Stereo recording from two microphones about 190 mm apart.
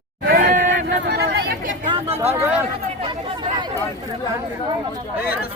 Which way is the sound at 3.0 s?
25° right (ahead or behind).